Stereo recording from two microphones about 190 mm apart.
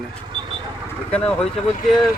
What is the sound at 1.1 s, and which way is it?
Speech, 5° left (ahead or behind).